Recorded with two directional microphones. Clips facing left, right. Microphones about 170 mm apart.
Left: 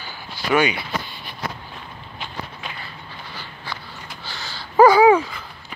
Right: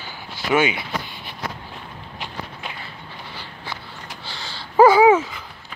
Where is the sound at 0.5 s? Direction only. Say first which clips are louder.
Even; 20° right (ahead or behind).